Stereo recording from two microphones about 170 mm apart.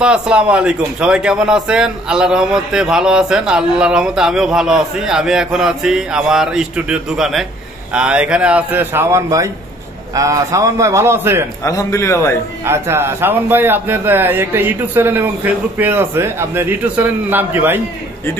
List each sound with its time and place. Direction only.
0.0 s a man's voice: 5° right (ahead or behind)
11.6 s a man's voice: 20° left (ahead or behind)
12.6 s a man's voice: 15° right (ahead or behind)